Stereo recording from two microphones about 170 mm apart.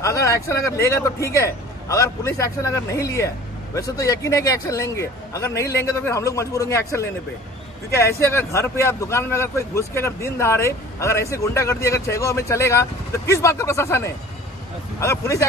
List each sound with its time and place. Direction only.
0.0 s a man's voice: 20° left (ahead or behind)
8.2 s speech: 15° left (ahead or behind)